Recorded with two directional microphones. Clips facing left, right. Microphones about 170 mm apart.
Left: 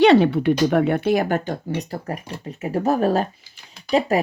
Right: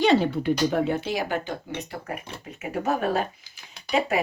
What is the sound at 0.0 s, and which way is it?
Speech, 70° left (ahead or behind).